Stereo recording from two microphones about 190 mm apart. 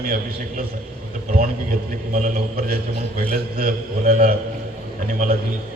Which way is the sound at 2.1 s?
45° right (ahead or behind).